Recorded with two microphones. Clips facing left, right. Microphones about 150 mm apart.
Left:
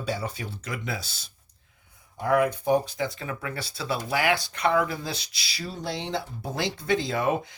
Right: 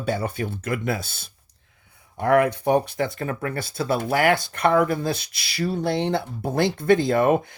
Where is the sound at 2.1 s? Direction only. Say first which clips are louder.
Right 4 dB; 65° right (ahead or behind).